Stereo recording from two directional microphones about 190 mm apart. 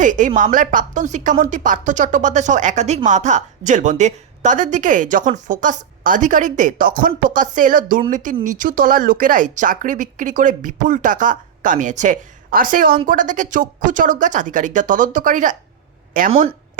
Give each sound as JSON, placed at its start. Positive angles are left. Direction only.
{"t": 0.0, "sound": "speech", "side_deg": -40}